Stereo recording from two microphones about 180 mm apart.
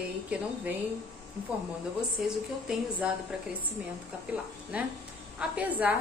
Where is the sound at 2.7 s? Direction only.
5° right (ahead or behind).